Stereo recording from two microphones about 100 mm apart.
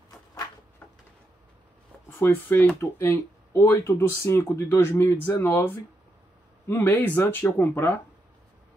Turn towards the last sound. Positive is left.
turn(degrees=20)  # may be behind; listen again after turning